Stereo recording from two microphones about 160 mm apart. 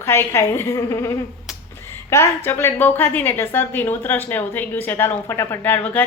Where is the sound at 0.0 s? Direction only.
15° left (ahead or behind).